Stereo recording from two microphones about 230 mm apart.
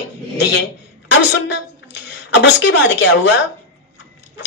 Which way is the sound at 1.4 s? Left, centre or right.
Left.